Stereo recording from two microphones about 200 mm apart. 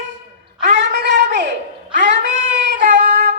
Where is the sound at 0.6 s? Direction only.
35° right (ahead or behind).